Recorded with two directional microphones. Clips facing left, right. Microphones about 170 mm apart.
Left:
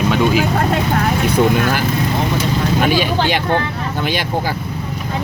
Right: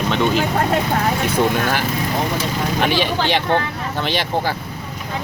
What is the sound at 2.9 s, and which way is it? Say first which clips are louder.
Speech: left 2 dB; 5° left (ahead or behind).